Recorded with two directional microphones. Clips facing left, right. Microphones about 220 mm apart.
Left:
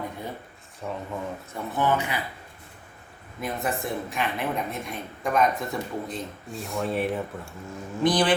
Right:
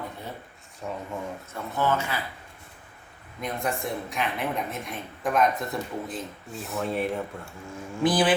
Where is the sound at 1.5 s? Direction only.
15° left (ahead or behind).